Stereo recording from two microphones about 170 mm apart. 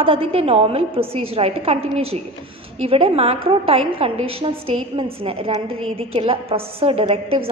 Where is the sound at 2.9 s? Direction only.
35° right (ahead or behind).